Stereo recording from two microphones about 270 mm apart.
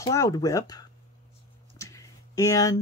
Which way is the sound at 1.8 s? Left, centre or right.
Centre.